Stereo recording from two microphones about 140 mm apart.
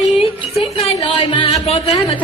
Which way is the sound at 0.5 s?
45° left (ahead or behind).